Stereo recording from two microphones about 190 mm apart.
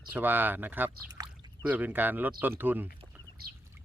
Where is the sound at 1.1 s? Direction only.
20° right (ahead or behind).